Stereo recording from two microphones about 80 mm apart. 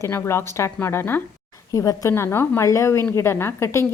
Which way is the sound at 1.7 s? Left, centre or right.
Left.